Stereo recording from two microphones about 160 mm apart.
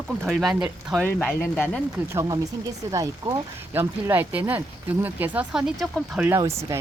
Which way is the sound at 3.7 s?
15° right (ahead or behind).